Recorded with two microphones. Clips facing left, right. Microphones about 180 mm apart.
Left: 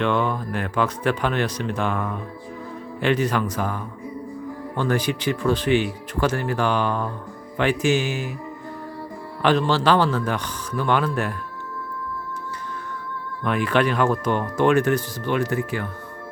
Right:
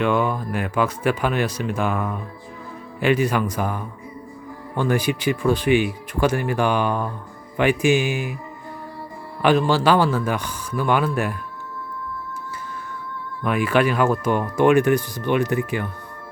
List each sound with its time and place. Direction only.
0.0 s speech: 10° right (ahead or behind)
9.4 s speech: 10° right (ahead or behind)
13.4 s speech: 5° right (ahead or behind)